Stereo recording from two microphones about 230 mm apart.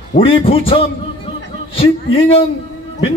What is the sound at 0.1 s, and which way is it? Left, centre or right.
A man's voice, left.